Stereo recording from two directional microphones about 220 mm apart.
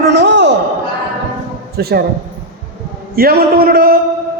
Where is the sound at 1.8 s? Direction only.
45° right (ahead or behind).